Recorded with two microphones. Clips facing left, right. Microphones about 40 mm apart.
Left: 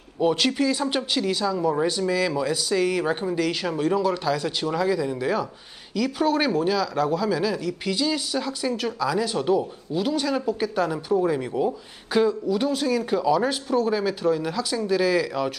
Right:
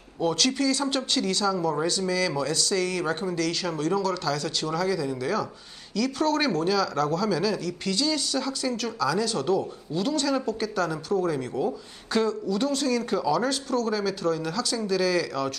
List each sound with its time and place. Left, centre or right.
0.2 s speech: centre